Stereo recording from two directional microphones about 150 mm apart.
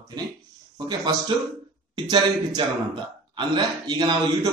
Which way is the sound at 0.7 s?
30° right (ahead or behind).